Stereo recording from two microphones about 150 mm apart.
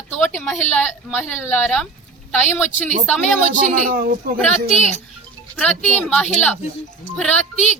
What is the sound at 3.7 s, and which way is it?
Speech, 80° right.